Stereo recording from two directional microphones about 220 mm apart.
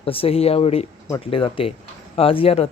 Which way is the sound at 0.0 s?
25° left (ahead or behind).